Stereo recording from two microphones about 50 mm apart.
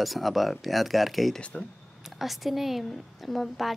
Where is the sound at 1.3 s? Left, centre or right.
Centre.